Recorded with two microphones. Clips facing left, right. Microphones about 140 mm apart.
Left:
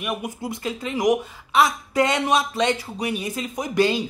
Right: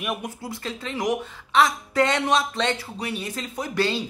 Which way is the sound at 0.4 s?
15° left (ahead or behind).